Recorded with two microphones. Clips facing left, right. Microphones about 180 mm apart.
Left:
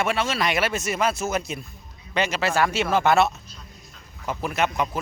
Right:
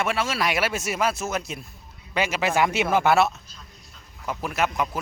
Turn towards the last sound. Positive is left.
turn(degrees=0)  # may be behind; listen again after turning